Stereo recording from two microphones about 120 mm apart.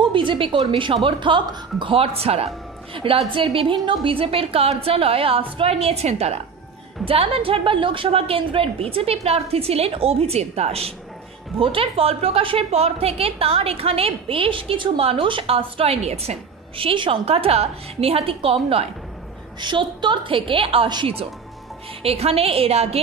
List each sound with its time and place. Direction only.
0.0 s a woman's voice: 45° right (ahead or behind)
19.6 s a woman's voice: 40° right (ahead or behind); by 22.9 s 60° right (ahead or behind)